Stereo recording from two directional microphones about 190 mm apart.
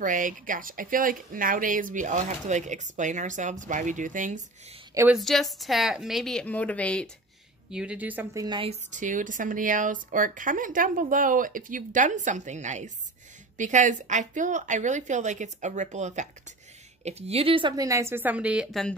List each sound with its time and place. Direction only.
0.0 s speech: 45° right (ahead or behind)
4.9 s a woman's voice: 10° right (ahead or behind)
7.7 s speech: 5° right (ahead or behind); by 8.7 s 25° right (ahead or behind)
8.9 s a woman's voice: 40° right (ahead or behind); by 18.9 s centre (ahead or behind)